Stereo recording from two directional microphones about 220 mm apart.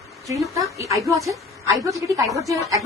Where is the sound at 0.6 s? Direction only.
15° right (ahead or behind).